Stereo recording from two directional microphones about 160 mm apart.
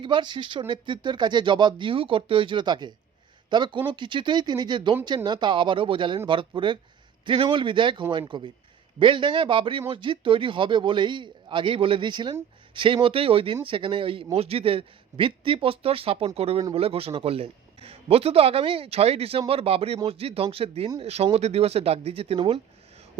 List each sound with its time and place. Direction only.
0.0 s a man's voice: 30° right (ahead or behind)